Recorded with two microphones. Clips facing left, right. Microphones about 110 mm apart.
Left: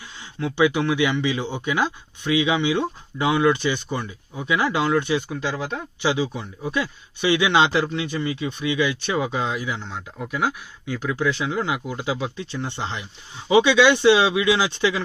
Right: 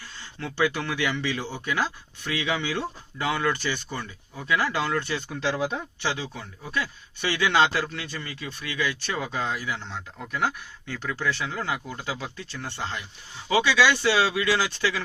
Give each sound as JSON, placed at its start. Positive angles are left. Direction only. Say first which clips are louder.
{"t": 0.2, "sound": "speech", "louder": "left 6 dB", "side_deg": 15}
{"t": 5.5, "sound": "speech", "louder": "right 1 dB", "side_deg": -5}
{"t": 6.0, "sound": "speech", "louder": "left 11 dB", "side_deg": 15}